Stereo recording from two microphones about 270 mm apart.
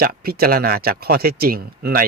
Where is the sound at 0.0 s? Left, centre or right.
Right.